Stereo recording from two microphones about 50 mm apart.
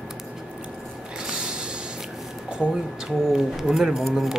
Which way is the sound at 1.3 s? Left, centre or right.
Centre.